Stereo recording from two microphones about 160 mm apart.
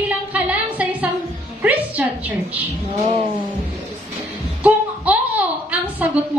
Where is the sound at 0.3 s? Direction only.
10° right (ahead or behind).